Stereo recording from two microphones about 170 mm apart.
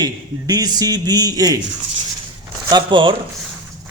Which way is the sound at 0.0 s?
25° right (ahead or behind).